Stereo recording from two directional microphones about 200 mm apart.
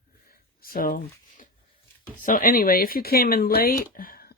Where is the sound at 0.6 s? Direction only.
45° left (ahead or behind).